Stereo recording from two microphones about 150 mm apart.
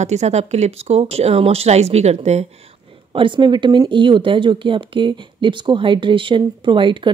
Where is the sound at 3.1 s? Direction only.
35° right (ahead or behind).